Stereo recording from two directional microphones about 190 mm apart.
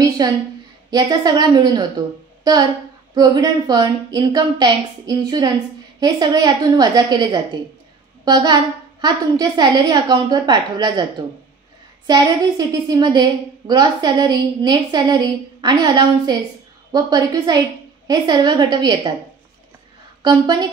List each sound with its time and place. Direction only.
0.8 s a woman's voice: 20° right (ahead or behind)
3.2 s a woman's voice: 20° right (ahead or behind)
12.1 s a woman's voice: 20° right (ahead or behind)
20.2 s a woman's voice: 20° right (ahead or behind)